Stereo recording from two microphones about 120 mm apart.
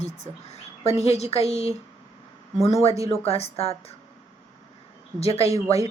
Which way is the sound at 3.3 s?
55° left (ahead or behind).